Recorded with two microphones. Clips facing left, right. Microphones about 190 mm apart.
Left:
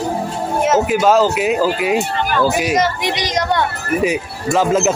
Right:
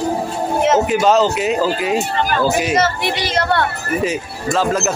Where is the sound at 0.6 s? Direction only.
5° left (ahead or behind).